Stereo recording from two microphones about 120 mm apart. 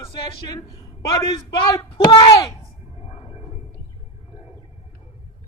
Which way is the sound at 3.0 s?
55° left (ahead or behind).